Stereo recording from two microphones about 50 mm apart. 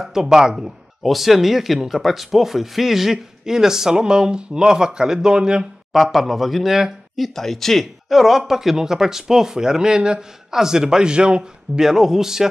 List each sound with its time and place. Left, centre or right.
0.0 s speech: centre
5.9 s speech: centre
7.3 s speech: centre
8.1 s speech: centre
11.8 s speech: centre